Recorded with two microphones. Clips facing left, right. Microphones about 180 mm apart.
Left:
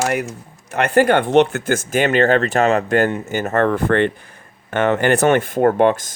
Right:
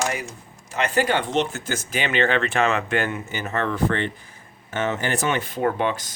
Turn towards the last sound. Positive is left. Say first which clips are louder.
# left 9 dB
turn(degrees=50)  # may be behind; listen again after turning